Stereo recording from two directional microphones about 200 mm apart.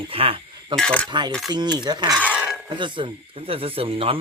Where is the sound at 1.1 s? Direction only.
25° right (ahead or behind).